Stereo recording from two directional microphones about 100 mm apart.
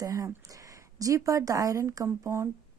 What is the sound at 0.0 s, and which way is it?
Speech, 35° right (ahead or behind).